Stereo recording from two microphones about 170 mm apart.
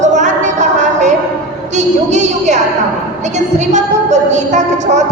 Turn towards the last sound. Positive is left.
turn(degrees=-45)  # may be behind; listen again after turning